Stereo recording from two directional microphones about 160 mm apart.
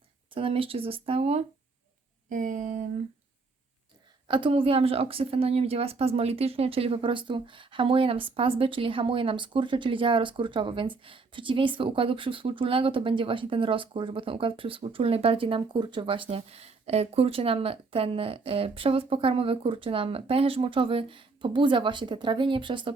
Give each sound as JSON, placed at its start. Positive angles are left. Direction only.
{"t": 0.3, "sound": "speech", "side_deg": -35}
{"t": 2.3, "sound": "speech", "side_deg": -55}
{"t": 4.3, "sound": "speech", "side_deg": -30}